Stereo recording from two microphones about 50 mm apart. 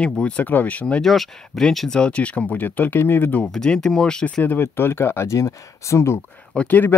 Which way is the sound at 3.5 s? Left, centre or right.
Centre.